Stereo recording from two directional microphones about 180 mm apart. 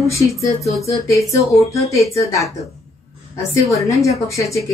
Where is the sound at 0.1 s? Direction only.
15° left (ahead or behind).